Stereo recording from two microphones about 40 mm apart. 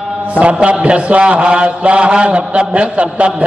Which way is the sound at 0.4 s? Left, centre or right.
Right.